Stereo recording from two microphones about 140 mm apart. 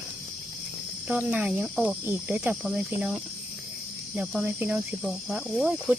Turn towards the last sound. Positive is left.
turn(degrees=-5)  # may be behind; listen again after turning